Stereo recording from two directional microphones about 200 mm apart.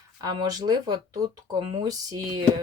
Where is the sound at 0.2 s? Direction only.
20° right (ahead or behind).